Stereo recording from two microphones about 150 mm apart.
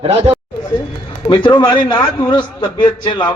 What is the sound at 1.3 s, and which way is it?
A man's voice, 30° left (ahead or behind).